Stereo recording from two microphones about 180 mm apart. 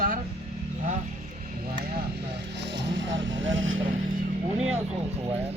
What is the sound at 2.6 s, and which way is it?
Vehicle, 80° right.